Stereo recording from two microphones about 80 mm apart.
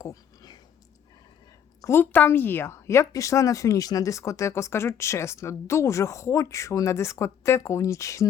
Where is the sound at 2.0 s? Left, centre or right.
Left.